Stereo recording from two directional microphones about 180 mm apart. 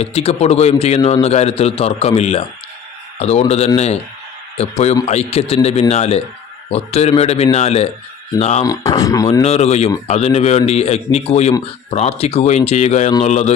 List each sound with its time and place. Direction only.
0.0 s a man's voice: 35° left (ahead or behind)
8.6 s speech: 20° left (ahead or behind)
9.4 s a man's voice: 35° left (ahead or behind)